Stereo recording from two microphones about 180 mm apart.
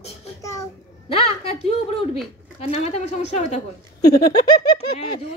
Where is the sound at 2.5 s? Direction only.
35° left (ahead or behind).